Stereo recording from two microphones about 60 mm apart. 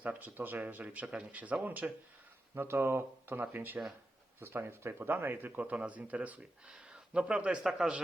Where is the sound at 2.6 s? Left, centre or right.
Right.